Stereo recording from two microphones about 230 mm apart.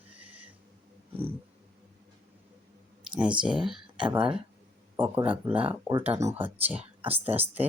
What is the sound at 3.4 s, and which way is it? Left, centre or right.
Speech, centre.